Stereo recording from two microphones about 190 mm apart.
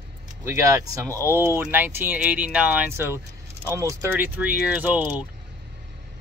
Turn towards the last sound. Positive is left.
turn(degrees=-10)  # may be behind; listen again after turning